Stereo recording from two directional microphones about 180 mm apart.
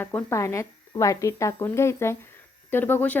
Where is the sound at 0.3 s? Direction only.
15° left (ahead or behind).